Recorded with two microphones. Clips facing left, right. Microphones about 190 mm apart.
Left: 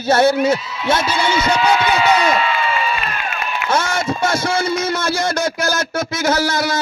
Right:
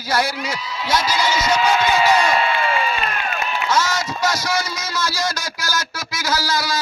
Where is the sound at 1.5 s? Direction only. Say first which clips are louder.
Left 1 dB; 65° left (ahead or behind).